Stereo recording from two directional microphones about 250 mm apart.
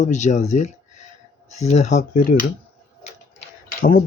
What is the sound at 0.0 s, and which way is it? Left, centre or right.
Speech, left.